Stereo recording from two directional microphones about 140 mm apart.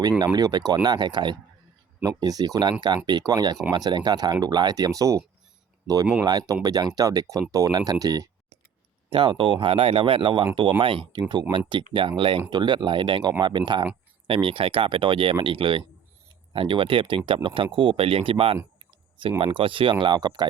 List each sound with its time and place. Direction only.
0.3 s speech: 30° right (ahead or behind)
6.5 s speech: 25° right (ahead or behind)
9.1 s speech: 35° right (ahead or behind)